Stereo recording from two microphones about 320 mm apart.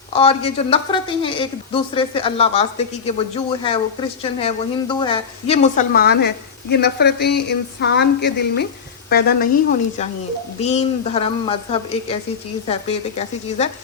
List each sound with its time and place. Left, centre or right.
0.1 s a woman's voice: centre
10.6 s a woman's voice: left